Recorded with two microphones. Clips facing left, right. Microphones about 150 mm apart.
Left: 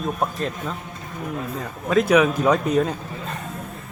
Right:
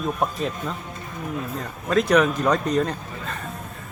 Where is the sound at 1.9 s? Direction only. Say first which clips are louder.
Left 2 dB; 5° left (ahead or behind).